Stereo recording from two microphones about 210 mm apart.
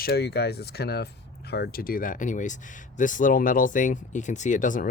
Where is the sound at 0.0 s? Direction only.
50° left (ahead or behind).